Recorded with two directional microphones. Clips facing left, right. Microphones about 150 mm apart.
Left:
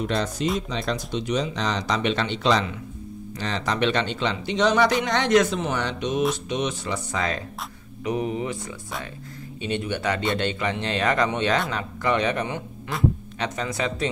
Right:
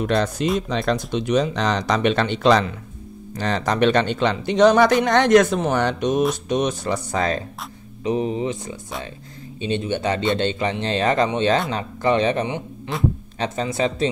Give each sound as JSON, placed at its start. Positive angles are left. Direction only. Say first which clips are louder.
{"t": 0.0, "sound": "speech", "louder": "right 4 dB", "side_deg": -60}